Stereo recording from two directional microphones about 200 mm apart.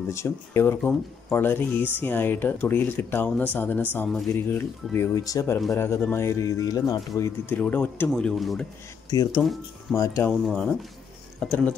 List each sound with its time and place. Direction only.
0.1 s speech: 15° left (ahead or behind)
9.9 s speech: 15° left (ahead or behind)
10.4 s speech: centre (ahead or behind)